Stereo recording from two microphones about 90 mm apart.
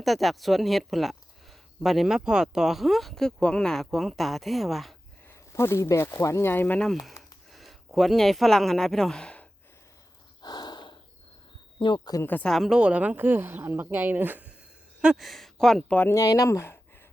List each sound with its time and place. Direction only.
0.0 s speech: centre (ahead or behind)
5.3 s speech: 30° left (ahead or behind)
7.2 s a sound: centre (ahead or behind)
10.4 s snort: 50° left (ahead or behind)
11.9 s speech: 40° left (ahead or behind)
12.2 s speech: 20° left (ahead or behind)
12.5 s speech: centre (ahead or behind)
12.8 s speech: 15° right (ahead or behind)
15.0 s speech: 5° right (ahead or behind)
16.1 s speech: 40° left (ahead or behind)